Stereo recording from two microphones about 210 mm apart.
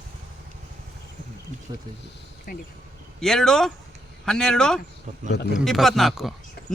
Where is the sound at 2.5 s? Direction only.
40° left (ahead or behind).